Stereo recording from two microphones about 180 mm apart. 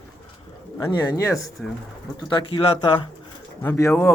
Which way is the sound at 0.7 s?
20° left (ahead or behind).